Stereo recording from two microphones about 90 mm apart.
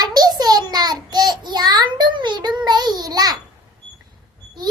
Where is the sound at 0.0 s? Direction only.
50° right (ahead or behind).